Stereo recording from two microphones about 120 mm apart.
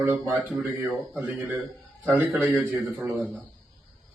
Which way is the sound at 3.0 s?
15° right (ahead or behind).